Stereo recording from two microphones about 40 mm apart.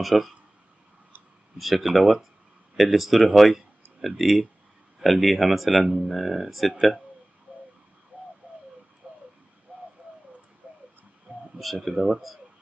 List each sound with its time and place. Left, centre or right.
0.0 s speech: centre
1.6 s speech: centre
9.0 s a sound: centre
9.7 s bird: right
10.6 s a sound: right
11.6 s speech: centre